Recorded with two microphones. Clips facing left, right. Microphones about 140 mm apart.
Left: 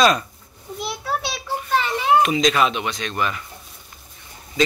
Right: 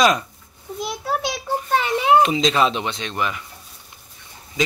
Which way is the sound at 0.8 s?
40° right (ahead or behind).